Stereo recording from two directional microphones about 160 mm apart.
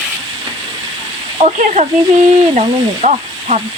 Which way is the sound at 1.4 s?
45° right (ahead or behind).